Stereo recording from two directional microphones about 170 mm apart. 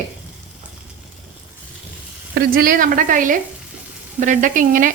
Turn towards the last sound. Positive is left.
turn(degrees=-50)  # may be behind; listen again after turning